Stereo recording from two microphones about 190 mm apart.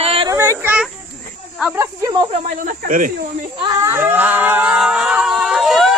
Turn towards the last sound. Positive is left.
turn(degrees=0)  # may be behind; listen again after turning